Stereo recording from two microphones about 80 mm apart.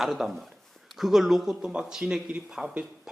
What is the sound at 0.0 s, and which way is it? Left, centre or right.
A man's voice, centre.